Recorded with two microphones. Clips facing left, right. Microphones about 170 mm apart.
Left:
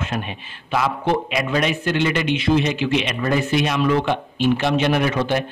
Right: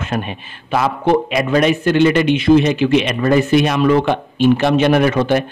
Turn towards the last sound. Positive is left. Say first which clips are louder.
# right 6 dB
turn(degrees=-55)  # may be behind; listen again after turning